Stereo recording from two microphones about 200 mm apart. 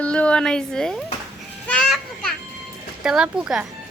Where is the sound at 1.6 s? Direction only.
5° left (ahead or behind).